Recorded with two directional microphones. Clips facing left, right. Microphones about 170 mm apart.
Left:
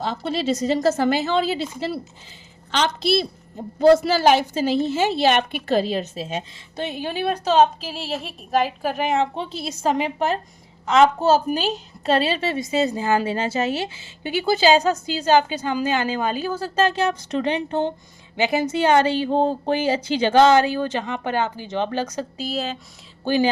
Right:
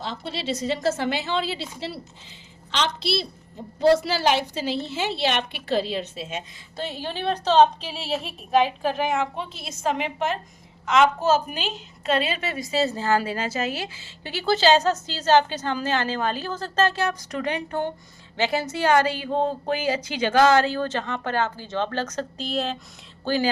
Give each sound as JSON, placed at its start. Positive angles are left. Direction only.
{"t": 0.0, "sound": "a woman's voice", "side_deg": 45}
{"t": 2.7, "sound": "a woman's voice", "side_deg": 50}
{"t": 6.7, "sound": "a woman's voice", "side_deg": 15}
{"t": 23.2, "sound": "speech", "side_deg": 20}